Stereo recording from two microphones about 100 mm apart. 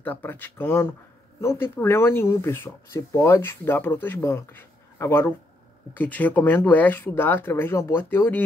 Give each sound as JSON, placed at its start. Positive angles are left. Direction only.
{"t": 0.0, "sound": "speech", "side_deg": 20}